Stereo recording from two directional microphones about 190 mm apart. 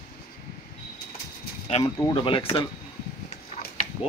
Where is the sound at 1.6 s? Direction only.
30° left (ahead or behind).